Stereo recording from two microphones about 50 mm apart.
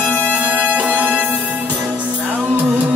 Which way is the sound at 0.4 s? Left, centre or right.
Right.